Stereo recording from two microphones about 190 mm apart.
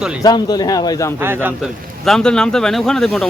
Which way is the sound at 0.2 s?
20° left (ahead or behind).